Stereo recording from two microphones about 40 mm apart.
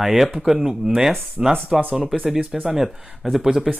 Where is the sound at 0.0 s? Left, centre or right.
Centre.